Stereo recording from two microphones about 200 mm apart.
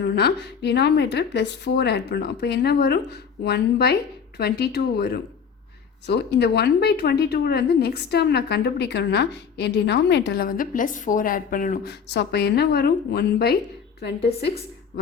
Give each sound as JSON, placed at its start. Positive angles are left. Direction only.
{"t": 0.2, "sound": "a woman's voice", "side_deg": 55}